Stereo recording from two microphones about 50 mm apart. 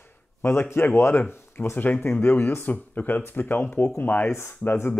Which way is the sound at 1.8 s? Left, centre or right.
Left.